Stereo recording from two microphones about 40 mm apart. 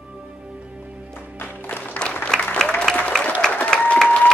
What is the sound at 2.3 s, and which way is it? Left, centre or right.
Applause, centre.